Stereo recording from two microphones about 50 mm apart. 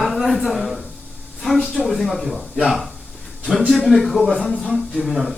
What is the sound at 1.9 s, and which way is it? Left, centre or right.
Speech, centre.